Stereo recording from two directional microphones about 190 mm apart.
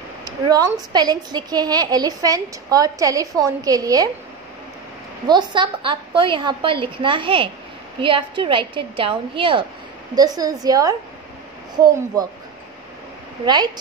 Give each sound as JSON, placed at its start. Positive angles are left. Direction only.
{"t": 0.2, "sound": "a woman's voice", "side_deg": -20}
{"t": 5.3, "sound": "a woman's voice", "side_deg": -25}
{"t": 12.1, "sound": "a woman's voice", "side_deg": -20}